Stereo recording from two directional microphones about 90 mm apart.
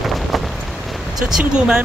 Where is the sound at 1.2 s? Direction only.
10° right (ahead or behind).